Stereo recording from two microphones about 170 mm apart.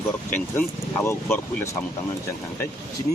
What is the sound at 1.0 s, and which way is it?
Speech, 15° left (ahead or behind).